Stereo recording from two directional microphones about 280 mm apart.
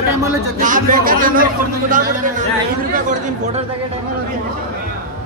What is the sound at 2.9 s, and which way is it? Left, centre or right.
Speech, right.